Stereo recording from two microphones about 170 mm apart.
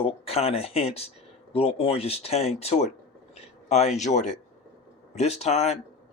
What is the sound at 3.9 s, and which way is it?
Speech, 45° left (ahead or behind).